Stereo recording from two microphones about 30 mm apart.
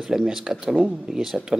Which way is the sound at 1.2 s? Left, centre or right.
Centre.